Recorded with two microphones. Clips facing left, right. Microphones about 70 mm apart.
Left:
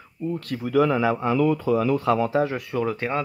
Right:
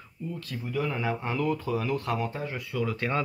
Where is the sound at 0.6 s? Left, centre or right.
Left.